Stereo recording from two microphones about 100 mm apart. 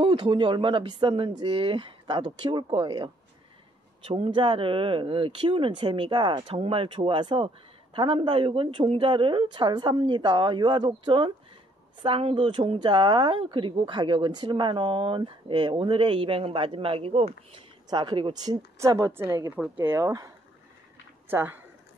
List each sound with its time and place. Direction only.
0.0 s a man's voice: 55° right (ahead or behind)
4.0 s speech: 75° right (ahead or behind)
4.3 s a man's voice: 55° right (ahead or behind)
7.0 s a man's voice: 50° right (ahead or behind)
11.1 s a man's voice: 60° right (ahead or behind)
12.4 s a man's voice: 55° right (ahead or behind); by 17.3 s 75° right (ahead or behind)
17.8 s speech: 45° right (ahead or behind)
18.3 s a woman's voice: 40° right (ahead or behind); by 20.1 s 25° right (ahead or behind)
21.3 s speech: 20° right (ahead or behind)